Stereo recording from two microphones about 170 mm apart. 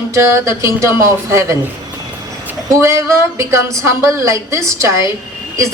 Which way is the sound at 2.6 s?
15° right (ahead or behind).